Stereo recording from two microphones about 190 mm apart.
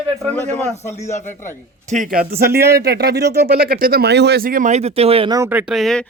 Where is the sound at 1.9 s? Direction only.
45° right (ahead or behind).